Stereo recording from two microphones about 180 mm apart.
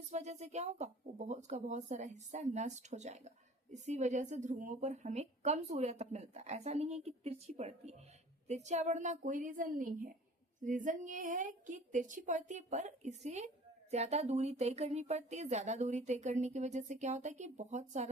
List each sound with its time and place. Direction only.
0.1 s a woman's voice: 40° right (ahead or behind)